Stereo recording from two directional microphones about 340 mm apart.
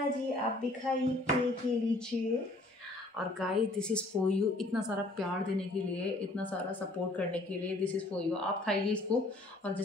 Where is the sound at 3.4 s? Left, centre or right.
Centre.